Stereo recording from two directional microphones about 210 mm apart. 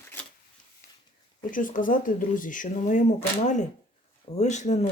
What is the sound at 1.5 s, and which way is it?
Speech, 40° left (ahead or behind).